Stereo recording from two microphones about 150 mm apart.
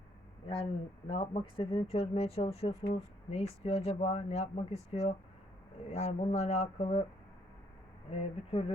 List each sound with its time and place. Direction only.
0.4 s speech: 40° left (ahead or behind)
8.1 s speech: 45° left (ahead or behind)